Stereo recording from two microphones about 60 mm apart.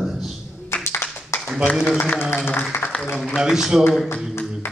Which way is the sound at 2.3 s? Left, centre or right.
Left.